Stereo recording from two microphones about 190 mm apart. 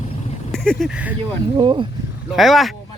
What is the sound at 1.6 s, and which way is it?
Speech, 25° right (ahead or behind).